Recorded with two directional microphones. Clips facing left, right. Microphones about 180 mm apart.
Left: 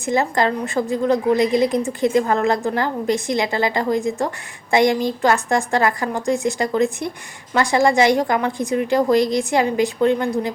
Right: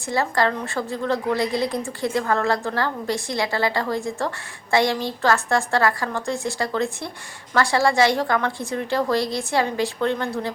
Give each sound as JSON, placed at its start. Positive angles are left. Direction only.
{"t": 0.0, "sound": "a woman's voice", "side_deg": 20}